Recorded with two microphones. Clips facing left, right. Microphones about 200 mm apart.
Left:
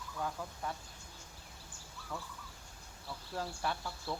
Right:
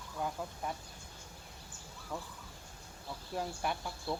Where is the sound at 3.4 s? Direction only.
15° right (ahead or behind).